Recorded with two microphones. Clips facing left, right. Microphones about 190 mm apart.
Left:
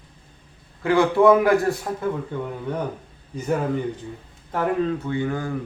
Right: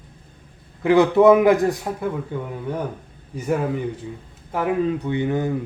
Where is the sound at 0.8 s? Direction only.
20° right (ahead or behind).